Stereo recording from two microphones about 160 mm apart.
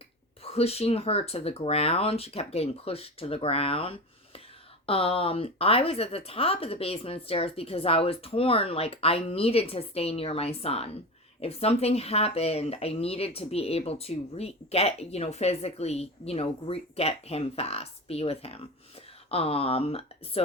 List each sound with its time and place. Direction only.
0.4 s speech: 40° left (ahead or behind)